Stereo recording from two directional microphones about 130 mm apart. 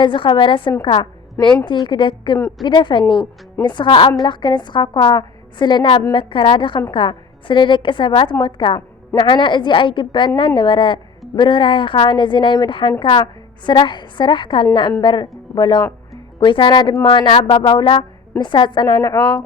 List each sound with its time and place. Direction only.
0.0 s a woman's voice: 40° left (ahead or behind)